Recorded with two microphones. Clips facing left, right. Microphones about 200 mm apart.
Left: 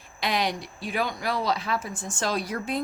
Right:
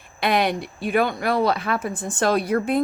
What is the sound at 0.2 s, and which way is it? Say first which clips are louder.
Speech: right 6 dB; 60° right (ahead or behind).